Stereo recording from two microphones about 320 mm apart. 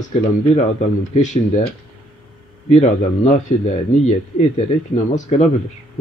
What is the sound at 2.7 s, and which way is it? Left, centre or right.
Speech, left.